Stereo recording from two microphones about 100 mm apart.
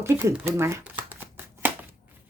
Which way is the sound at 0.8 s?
20° right (ahead or behind).